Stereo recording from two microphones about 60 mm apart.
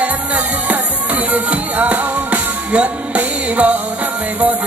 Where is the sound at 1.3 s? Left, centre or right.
Right.